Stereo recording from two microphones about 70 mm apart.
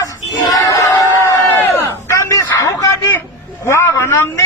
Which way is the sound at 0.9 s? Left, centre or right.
Left.